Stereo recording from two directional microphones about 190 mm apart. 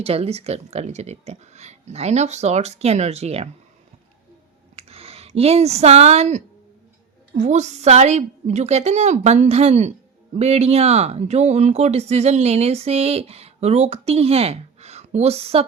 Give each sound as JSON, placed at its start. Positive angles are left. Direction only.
{"t": 0.0, "sound": "speech", "side_deg": -30}
{"t": 4.8, "sound": "speech", "side_deg": -30}